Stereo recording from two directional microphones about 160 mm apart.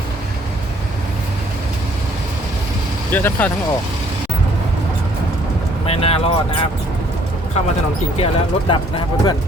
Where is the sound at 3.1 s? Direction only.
10° left (ahead or behind).